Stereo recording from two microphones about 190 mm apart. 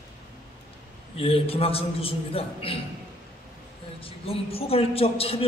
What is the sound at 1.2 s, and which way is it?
A man's voice, 30° left (ahead or behind).